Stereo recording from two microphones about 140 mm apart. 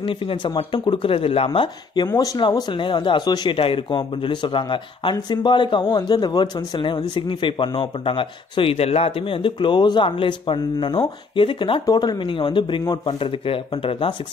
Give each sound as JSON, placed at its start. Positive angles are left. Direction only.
{"t": 0.0, "sound": "speech", "side_deg": 40}